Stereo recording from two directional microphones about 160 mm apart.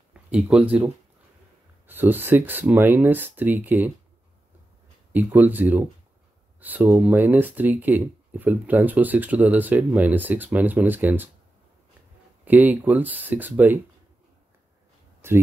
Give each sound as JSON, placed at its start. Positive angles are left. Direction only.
{"t": 0.1, "sound": "speech", "side_deg": -5}
{"t": 5.1, "sound": "speech", "side_deg": -10}
{"t": 12.4, "sound": "speech", "side_deg": -10}
{"t": 15.2, "sound": "speech", "side_deg": -15}